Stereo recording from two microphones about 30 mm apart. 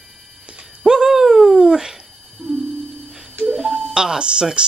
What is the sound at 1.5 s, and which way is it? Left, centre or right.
Dog, right.